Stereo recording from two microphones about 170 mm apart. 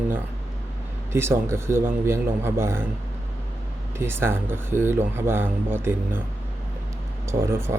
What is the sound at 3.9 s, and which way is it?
Speech, 15° right (ahead or behind).